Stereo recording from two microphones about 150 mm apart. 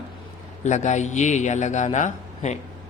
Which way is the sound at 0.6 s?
55° left (ahead or behind).